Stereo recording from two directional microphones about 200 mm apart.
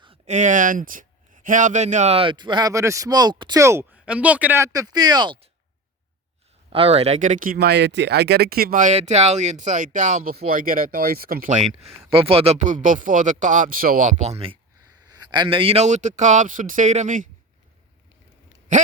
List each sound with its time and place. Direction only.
0.0 s speech: 30° right (ahead or behind)
6.7 s speech: 30° right (ahead or behind)